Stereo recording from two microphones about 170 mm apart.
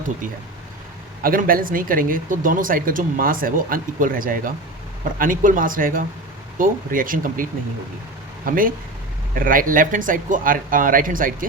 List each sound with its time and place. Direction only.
1.2 s speech: 55° right (ahead or behind)
8.4 s speech: 55° right (ahead or behind)